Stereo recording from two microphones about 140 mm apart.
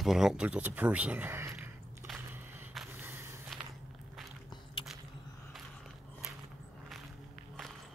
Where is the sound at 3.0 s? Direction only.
15° right (ahead or behind).